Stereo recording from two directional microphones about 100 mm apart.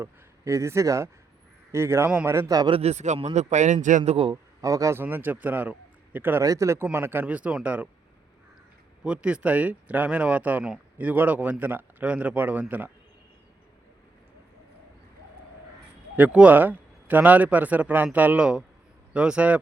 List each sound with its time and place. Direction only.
0.0 s a man's voice: 30° right (ahead or behind)
2.3 s speech: 35° right (ahead or behind)
2.6 s a man's voice: 65° right (ahead or behind); by 4.3 s 90° right
4.6 s speech: 35° right (ahead or behind)
4.9 s a man's voice: 20° right (ahead or behind)
6.4 s a man's voice: 30° right (ahead or behind); by 7.9 s 15° right (ahead or behind)
9.0 s a man's voice: 10° right (ahead or behind)
16.1 s a man's voice: 15° right (ahead or behind)